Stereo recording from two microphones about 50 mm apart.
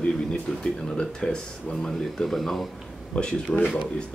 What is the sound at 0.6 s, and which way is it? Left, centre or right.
Speech, centre.